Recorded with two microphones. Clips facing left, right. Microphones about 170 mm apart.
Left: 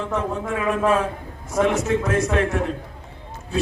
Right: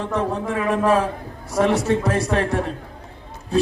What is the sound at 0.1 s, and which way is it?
A man's voice, 35° right (ahead or behind).